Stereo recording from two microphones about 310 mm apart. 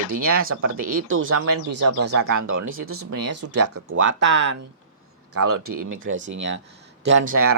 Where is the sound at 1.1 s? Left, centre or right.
Right.